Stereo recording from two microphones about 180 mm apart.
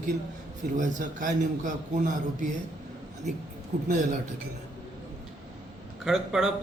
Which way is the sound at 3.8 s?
45° right (ahead or behind).